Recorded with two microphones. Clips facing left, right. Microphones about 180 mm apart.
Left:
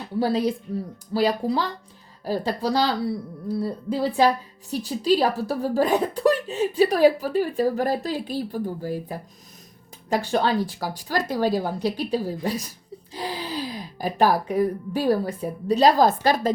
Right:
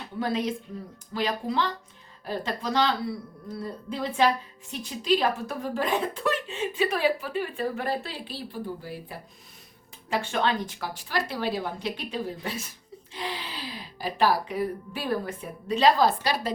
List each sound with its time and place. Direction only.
0.2 s a woman's voice: 35° left (ahead or behind)